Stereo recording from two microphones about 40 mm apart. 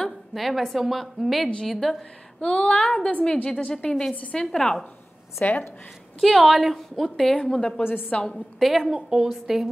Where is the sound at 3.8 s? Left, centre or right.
Left.